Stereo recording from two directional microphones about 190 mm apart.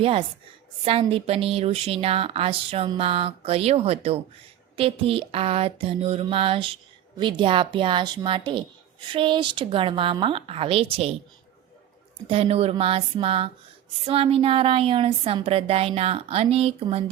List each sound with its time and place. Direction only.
0.0 s a woman's voice: 30° right (ahead or behind)
12.3 s speech: 30° right (ahead or behind)